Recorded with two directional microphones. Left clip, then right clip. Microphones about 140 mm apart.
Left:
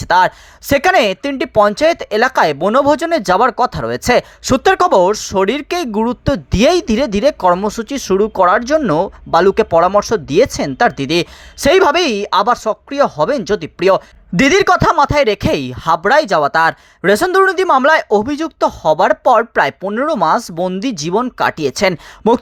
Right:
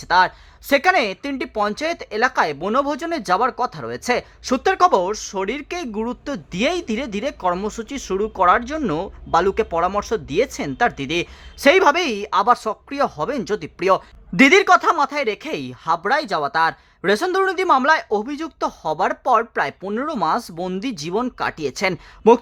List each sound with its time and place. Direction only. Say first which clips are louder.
0.1 s a woman's voice: left 5 dB; 45° left (ahead or behind)